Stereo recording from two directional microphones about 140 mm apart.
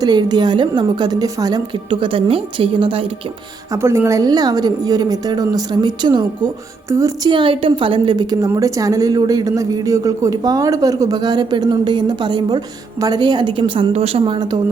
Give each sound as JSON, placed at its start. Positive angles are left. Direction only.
{"t": 0.0, "sound": "a woman's voice", "side_deg": -30}
{"t": 3.7, "sound": "a woman's voice", "side_deg": -20}
{"t": 6.9, "sound": "a woman's voice", "side_deg": -20}
{"t": 7.3, "sound": "a woman's voice", "side_deg": -35}